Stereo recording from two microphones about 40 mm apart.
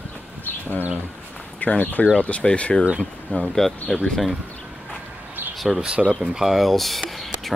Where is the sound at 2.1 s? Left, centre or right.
Left.